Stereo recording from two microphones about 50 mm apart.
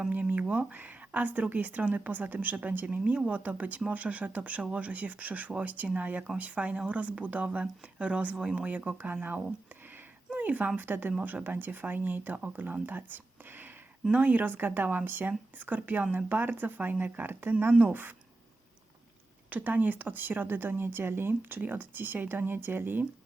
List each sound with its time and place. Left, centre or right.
0.1 s a sound: right
0.7 s speech: right; by 8.6 s centre
9.1 s speech: right
12.8 s a sound: right
14.1 s speech: right
17.7 s speech: right
19.5 s speech: right